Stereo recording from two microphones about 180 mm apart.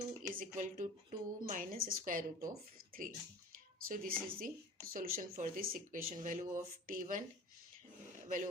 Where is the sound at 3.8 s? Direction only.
55° right (ahead or behind).